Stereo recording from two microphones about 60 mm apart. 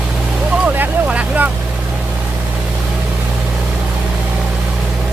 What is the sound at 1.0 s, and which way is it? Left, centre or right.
Vehicle, right.